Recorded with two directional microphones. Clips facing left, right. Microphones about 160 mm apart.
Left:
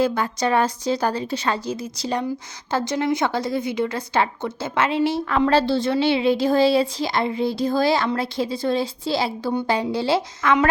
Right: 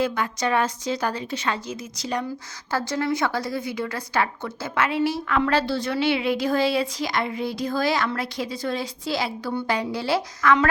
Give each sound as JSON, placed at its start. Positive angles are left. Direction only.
{"t": 0.0, "sound": "a woman's voice", "side_deg": 35}
{"t": 2.6, "sound": "a woman's voice", "side_deg": 20}